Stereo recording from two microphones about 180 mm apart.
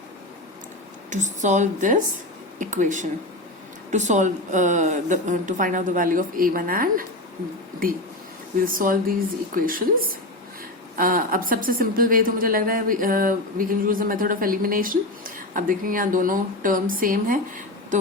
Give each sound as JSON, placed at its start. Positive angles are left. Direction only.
{"t": 1.1, "sound": "a woman's voice", "side_deg": -40}
{"t": 8.6, "sound": "a woman's voice", "side_deg": -50}